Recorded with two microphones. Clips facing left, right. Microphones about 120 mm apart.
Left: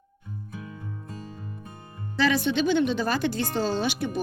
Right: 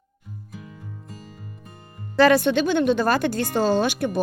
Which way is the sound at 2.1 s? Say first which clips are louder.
Right 7 dB; 55° right (ahead or behind).